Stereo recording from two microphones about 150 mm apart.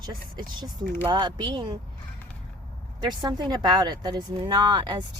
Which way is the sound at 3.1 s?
30° right (ahead or behind).